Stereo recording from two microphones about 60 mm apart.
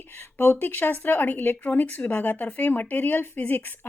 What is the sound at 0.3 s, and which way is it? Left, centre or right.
Speech, left.